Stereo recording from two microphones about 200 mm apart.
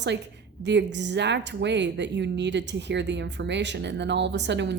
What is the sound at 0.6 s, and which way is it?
A woman's voice, 60° right (ahead or behind).